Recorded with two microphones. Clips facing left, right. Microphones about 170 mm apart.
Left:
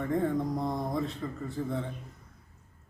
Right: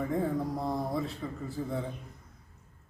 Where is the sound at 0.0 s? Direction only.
5° right (ahead or behind).